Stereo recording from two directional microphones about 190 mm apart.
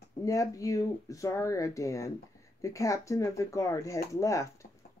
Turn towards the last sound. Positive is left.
turn(degrees=15)  # may be behind; listen again after turning